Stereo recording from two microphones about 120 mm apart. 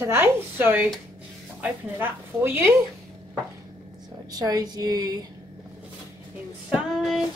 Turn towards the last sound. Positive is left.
turn(degrees=0)  # may be behind; listen again after turning